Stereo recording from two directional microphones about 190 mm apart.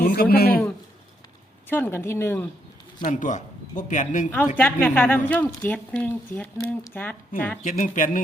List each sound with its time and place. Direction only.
0.0 s a man's voice: 50° left (ahead or behind)
1.7 s a woman's voice: 10° left (ahead or behind)
3.0 s speech: 45° left (ahead or behind)
4.5 s a woman's voice: 10° left (ahead or behind)
7.6 s speech: 40° left (ahead or behind)